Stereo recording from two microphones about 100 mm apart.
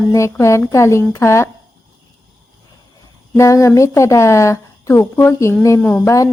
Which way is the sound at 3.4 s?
30° left (ahead or behind).